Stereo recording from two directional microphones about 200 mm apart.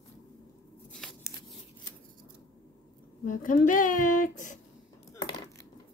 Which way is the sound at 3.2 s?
40° left (ahead or behind).